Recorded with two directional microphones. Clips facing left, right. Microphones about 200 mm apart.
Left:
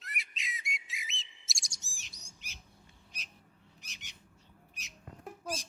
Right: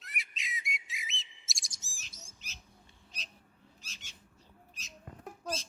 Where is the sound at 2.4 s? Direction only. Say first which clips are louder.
Left 2 dB; 15° left (ahead or behind).